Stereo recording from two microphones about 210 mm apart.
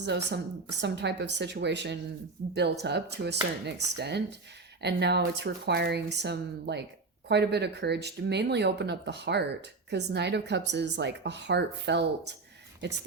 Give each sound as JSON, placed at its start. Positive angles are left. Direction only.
{"t": 0.0, "sound": "a woman's voice", "side_deg": -55}